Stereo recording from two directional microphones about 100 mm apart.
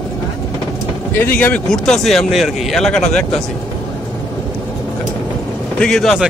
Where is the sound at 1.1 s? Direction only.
20° left (ahead or behind).